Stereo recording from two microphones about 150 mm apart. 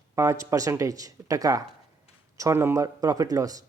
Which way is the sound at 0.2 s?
20° right (ahead or behind).